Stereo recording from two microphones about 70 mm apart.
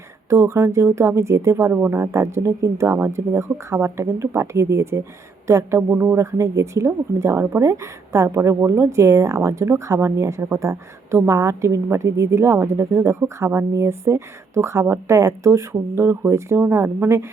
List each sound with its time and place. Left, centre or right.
0.3 s speech: right
1.7 s speech: right
2.0 s speech: right
5.9 s speech: right
6.1 s speech: right
16.6 s speech: right